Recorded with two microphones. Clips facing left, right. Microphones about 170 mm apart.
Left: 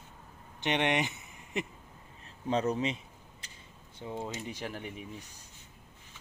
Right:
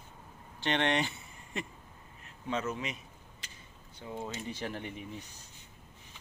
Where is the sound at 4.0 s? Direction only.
20° left (ahead or behind); by 5.0 s 5° left (ahead or behind).